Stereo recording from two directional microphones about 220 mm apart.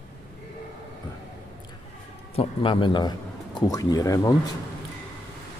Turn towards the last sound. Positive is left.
turn(degrees=15)  # may be behind; listen again after turning